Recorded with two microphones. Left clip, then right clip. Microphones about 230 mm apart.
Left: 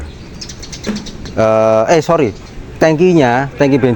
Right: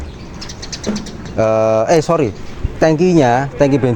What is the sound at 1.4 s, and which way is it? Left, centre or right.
Speech, left.